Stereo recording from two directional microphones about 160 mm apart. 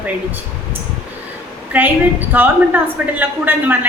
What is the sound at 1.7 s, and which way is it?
A woman's voice, 10° right (ahead or behind).